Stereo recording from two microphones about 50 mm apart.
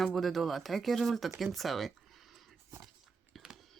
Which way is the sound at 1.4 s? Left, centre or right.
Centre.